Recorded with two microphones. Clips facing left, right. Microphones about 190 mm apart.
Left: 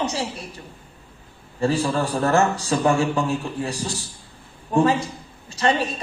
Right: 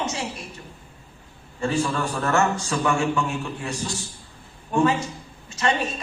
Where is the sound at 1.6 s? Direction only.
35° left (ahead or behind).